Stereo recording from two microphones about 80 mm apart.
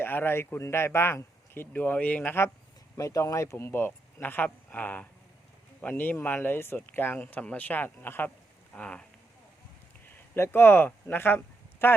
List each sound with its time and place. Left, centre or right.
0.0 s speech: left
3.0 s speech: left
8.7 s speech: centre
10.3 s speech: left